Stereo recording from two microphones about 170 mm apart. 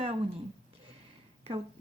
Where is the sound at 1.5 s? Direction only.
35° right (ahead or behind).